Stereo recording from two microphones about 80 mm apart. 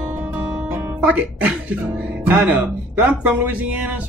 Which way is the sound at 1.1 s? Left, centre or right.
Centre.